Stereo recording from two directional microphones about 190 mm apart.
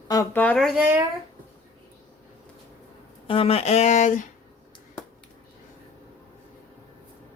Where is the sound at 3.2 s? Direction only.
30° left (ahead or behind).